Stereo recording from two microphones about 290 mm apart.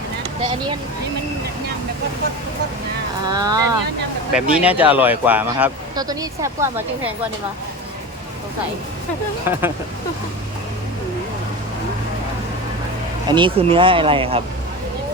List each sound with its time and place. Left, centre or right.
3.2 s speech: centre
9.5 s speech: centre
13.2 s speech: centre